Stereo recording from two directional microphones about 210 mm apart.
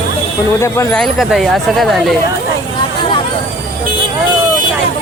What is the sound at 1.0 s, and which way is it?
Speech, centre (ahead or behind).